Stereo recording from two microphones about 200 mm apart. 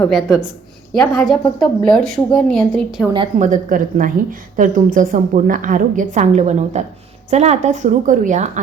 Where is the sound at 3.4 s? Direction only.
40° right (ahead or behind).